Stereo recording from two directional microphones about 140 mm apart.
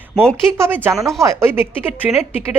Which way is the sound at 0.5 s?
15° right (ahead or behind).